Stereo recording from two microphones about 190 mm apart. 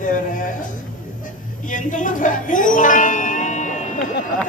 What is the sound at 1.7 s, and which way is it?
Speech, 45° left (ahead or behind).